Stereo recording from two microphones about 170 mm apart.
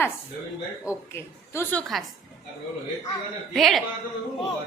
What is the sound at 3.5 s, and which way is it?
Speech, centre (ahead or behind).